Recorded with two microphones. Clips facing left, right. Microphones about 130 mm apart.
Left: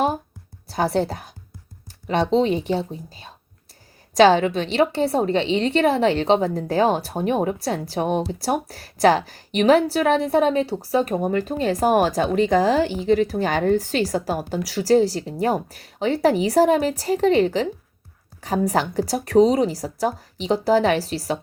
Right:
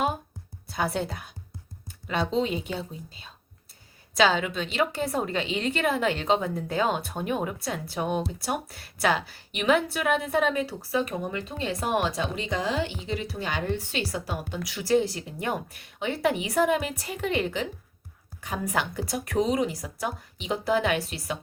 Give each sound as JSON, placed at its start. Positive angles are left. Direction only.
{"t": 0.7, "sound": "a woman's voice", "side_deg": 35}
{"t": 2.2, "sound": "speech", "side_deg": 75}
{"t": 2.6, "sound": "a woman's voice", "side_deg": 35}
{"t": 10.9, "sound": "a woman's voice", "side_deg": 45}